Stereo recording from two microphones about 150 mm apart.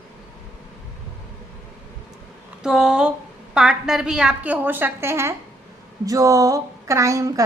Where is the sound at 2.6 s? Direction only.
5° right (ahead or behind).